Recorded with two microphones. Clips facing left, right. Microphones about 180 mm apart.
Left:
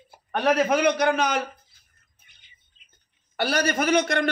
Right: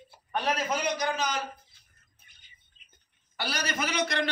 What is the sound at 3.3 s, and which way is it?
Speech, 55° left (ahead or behind).